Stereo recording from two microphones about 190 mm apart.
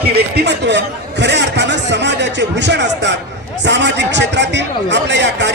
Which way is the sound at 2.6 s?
65° right (ahead or behind).